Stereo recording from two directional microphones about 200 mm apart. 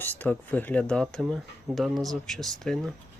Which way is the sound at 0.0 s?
10° left (ahead or behind).